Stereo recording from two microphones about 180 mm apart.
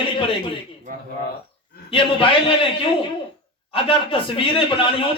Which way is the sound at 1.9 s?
30° left (ahead or behind).